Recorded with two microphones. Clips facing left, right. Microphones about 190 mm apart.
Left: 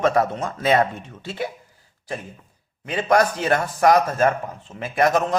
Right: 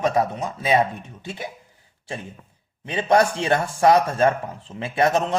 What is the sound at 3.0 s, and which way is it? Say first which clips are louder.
A man's voice: even; 25° right (ahead or behind).